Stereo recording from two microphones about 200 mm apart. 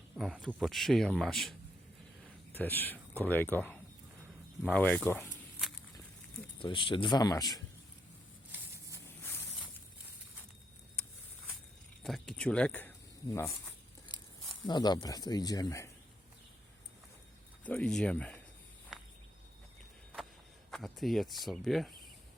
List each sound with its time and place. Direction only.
0.2 s speech: centre (ahead or behind)
6.6 s speech: 25° left (ahead or behind)
9.0 s a sound: 10° left (ahead or behind)
12.0 s speech: centre (ahead or behind)
14.7 s speech: 20° left (ahead or behind)
17.7 s speech: 5° left (ahead or behind)
20.7 s speech: centre (ahead or behind)